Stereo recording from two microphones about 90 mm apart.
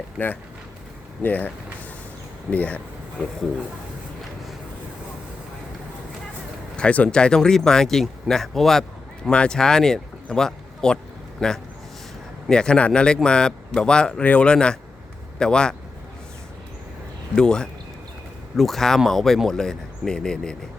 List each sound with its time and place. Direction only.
0.2 s speech: 15° left (ahead or behind)
2.5 s speech: 15° left (ahead or behind)
6.7 s speech: 15° left (ahead or behind)
17.3 s speech: 10° left (ahead or behind)